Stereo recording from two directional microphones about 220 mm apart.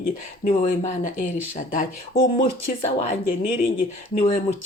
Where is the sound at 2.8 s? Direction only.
25° left (ahead or behind).